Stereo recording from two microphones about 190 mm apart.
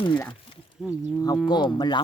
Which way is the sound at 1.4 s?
20° left (ahead or behind).